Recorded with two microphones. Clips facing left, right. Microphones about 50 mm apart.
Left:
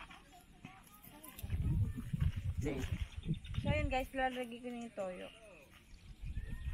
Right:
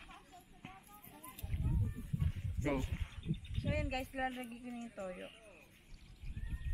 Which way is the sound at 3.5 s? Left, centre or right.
Left.